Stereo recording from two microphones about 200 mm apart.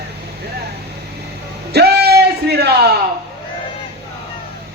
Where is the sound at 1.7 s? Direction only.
55° right (ahead or behind).